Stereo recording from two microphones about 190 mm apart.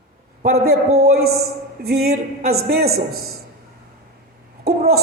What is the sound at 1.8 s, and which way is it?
A man's voice, 55° right (ahead or behind).